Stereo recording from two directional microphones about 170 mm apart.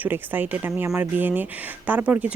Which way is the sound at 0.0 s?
10° right (ahead or behind).